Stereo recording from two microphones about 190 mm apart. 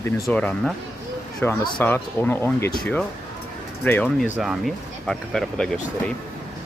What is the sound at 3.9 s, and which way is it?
Speech, 10° left (ahead or behind).